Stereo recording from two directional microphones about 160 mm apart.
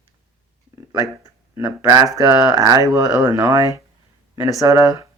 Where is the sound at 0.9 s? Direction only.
20° right (ahead or behind).